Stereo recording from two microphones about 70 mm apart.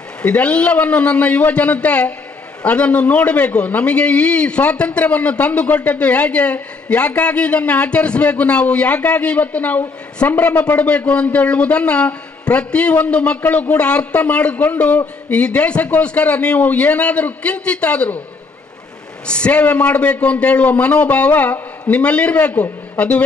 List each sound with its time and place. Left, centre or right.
0.2 s a man's voice: centre
19.2 s a man's voice: centre